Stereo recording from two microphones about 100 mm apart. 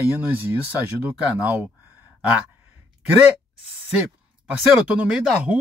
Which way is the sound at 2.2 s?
15° right (ahead or behind).